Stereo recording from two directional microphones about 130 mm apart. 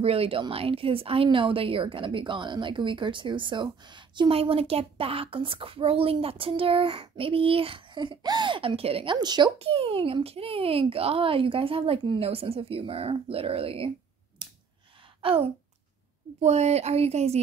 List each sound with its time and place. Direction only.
0.0 s speech: 50° right (ahead or behind)
9.6 s speech: 45° right (ahead or behind)
14.4 s a sound: 35° right (ahead or behind)
16.3 s speech: 60° right (ahead or behind)